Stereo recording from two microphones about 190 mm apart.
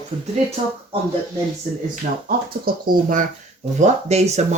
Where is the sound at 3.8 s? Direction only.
35° right (ahead or behind).